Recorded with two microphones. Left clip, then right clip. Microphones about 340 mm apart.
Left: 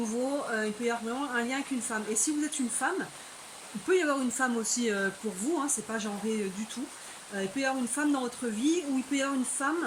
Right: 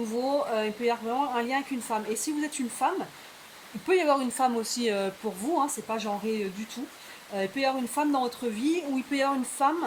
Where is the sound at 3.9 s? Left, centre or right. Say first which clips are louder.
Right 3 dB; centre.